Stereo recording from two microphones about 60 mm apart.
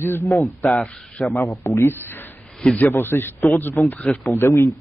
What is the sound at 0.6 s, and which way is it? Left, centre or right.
A man's voice, left.